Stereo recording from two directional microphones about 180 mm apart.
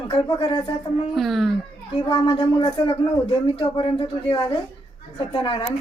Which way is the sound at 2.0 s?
25° left (ahead or behind).